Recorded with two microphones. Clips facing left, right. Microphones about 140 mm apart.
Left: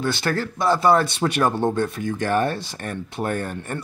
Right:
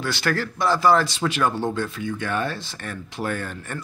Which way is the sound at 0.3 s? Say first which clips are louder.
Even; 25° left (ahead or behind).